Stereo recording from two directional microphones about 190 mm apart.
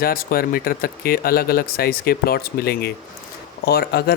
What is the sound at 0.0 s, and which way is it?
Speech, 50° left (ahead or behind).